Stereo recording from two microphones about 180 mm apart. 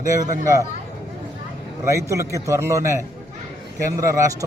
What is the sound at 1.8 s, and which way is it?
A man's voice, 15° right (ahead or behind).